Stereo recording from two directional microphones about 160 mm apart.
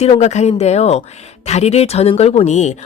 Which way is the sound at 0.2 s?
45° left (ahead or behind).